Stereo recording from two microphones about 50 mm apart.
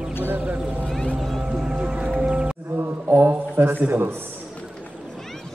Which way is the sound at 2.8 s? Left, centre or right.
Right.